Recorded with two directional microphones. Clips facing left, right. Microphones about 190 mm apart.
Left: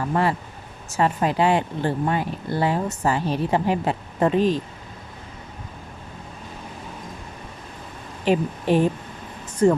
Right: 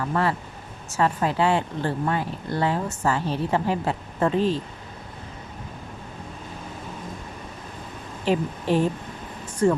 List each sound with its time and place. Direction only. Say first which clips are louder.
0.1 s a woman's voice: left 3 dB; 15° left (ahead or behind)
8.2 s speech: left 3 dB; 15° left (ahead or behind)